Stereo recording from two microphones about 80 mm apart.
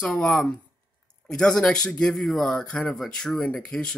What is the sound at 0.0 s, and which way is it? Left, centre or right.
Speech, centre.